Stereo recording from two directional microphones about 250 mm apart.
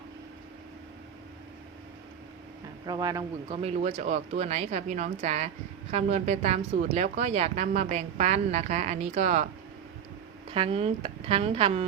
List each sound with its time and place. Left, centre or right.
2.8 s speech: centre
10.5 s speech: right